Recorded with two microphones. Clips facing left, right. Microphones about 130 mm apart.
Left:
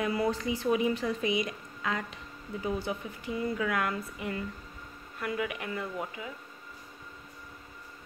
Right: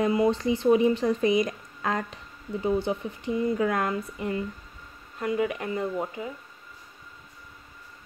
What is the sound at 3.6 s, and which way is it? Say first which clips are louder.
A woman's voice: right 5 dB; 35° right (ahead or behind).